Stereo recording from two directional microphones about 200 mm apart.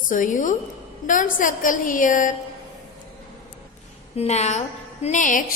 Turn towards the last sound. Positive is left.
turn(degrees=40)  # may be behind; listen again after turning